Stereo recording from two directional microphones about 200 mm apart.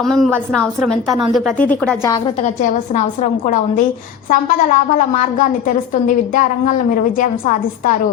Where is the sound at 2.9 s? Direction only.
40° left (ahead or behind).